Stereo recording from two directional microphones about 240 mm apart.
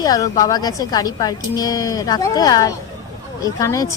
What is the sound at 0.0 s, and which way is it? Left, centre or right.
A woman's voice, centre.